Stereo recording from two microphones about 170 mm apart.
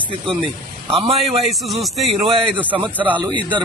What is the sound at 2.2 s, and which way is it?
Speech, 30° right (ahead or behind).